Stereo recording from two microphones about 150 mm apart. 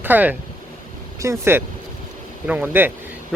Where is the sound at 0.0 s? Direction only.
10° right (ahead or behind).